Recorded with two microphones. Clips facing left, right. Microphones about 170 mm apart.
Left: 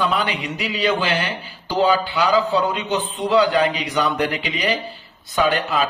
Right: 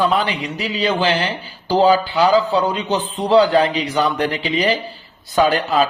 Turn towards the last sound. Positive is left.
turn(degrees=-35)  # may be behind; listen again after turning